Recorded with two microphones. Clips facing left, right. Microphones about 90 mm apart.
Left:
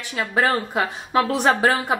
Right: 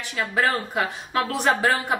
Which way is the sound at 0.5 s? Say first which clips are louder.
Left 2 dB; 35° left (ahead or behind).